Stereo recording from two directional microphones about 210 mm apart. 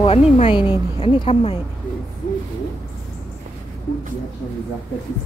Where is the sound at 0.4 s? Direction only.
25° left (ahead or behind).